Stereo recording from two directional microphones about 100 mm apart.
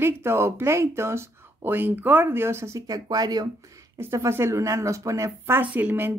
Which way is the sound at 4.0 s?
25° right (ahead or behind).